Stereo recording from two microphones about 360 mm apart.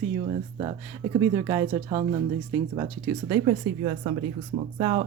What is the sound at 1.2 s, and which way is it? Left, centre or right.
Speech, centre.